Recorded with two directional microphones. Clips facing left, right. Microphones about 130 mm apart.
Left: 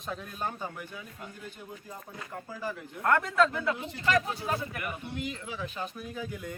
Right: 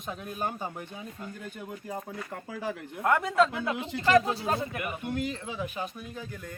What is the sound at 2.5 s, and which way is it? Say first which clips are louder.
Speech: right 2 dB; 70° right (ahead or behind).